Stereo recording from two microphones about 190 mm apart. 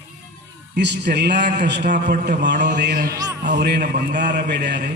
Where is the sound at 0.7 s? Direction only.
65° right (ahead or behind).